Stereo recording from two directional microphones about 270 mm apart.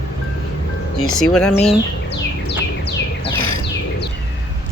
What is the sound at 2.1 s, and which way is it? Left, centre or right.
Bird, left.